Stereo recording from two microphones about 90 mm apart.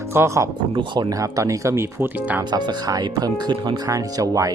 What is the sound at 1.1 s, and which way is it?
Speech, 40° right (ahead or behind).